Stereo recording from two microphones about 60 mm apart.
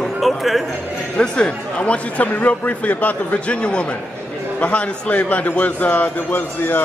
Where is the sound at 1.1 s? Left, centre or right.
Centre.